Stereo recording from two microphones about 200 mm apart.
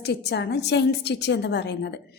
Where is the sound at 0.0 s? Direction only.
55° left (ahead or behind).